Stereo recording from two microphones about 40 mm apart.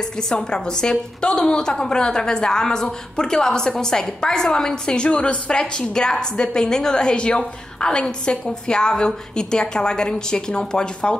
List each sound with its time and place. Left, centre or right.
0.3 s a woman's voice: centre